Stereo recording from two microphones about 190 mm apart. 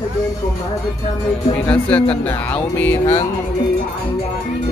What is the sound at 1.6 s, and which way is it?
Speech, 5° left (ahead or behind).